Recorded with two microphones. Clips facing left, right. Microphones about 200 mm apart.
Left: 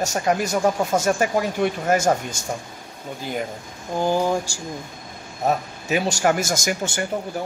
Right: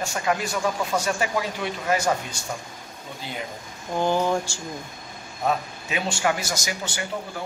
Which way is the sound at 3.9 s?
10° left (ahead or behind).